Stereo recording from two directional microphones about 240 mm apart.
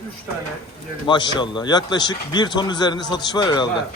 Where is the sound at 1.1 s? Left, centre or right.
Centre.